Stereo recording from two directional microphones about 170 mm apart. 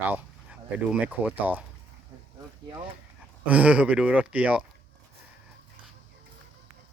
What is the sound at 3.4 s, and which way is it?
Speech, 10° right (ahead or behind).